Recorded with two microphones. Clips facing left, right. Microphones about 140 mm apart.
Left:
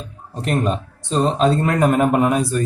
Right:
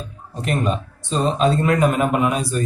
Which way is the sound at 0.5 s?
45° left (ahead or behind).